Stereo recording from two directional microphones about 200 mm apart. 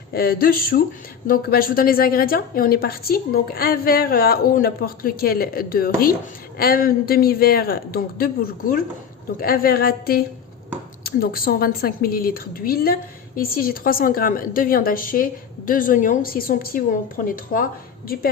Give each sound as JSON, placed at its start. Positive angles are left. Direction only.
{"t": 0.1, "sound": "a woman's voice", "side_deg": 50}